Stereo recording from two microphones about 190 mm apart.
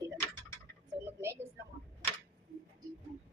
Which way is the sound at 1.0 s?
15° right (ahead or behind).